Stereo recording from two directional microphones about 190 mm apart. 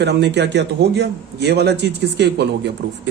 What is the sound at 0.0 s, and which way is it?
A man's voice, 65° right (ahead or behind).